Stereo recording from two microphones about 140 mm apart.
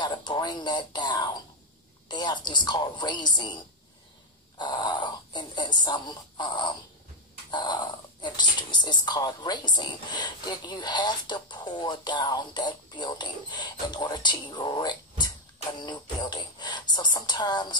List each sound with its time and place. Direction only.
0.0 s speech: 35° left (ahead or behind)